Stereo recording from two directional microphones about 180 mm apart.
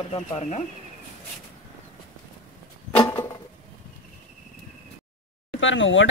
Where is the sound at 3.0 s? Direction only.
10° left (ahead or behind).